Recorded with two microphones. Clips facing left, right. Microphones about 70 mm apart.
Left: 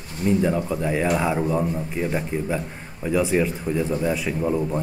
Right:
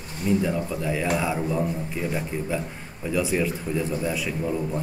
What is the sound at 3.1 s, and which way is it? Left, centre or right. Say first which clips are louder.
A man's voice: left 3 dB; left.